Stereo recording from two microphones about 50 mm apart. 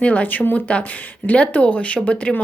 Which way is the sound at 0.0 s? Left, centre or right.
Left.